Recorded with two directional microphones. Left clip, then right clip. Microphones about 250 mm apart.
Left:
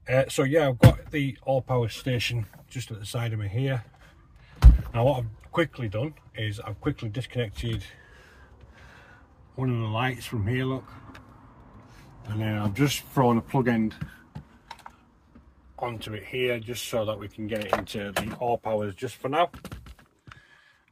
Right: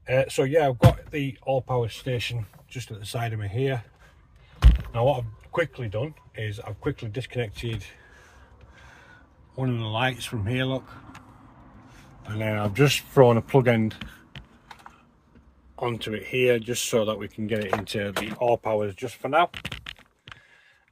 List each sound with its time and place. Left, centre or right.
0.1 s speech: centre
2.7 s speech: centre
4.9 s speech: centre
9.6 s speech: centre
12.3 s speech: right
15.8 s speech: right
17.8 s speech: right